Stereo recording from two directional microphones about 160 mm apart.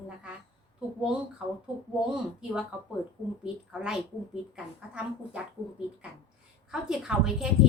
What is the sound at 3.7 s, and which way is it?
A woman's voice, 5° right (ahead or behind).